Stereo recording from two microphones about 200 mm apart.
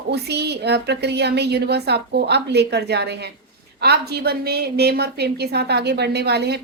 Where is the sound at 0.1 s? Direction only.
55° right (ahead or behind).